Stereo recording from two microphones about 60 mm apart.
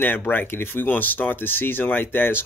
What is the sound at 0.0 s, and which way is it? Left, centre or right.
Speech, left.